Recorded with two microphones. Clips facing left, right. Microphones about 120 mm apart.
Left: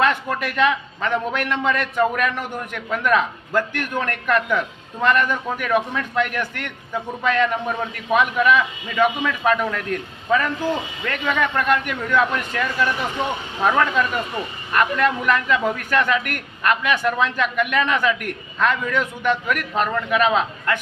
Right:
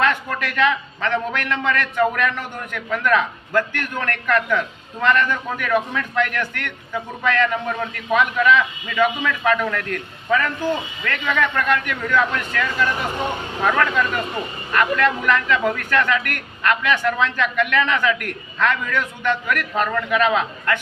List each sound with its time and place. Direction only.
0.0 s a man's voice: 15° left (ahead or behind)